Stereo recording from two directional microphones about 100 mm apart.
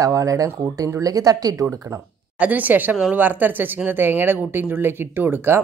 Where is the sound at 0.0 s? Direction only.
35° right (ahead or behind).